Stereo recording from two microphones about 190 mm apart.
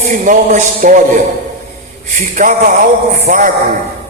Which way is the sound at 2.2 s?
45° right (ahead or behind).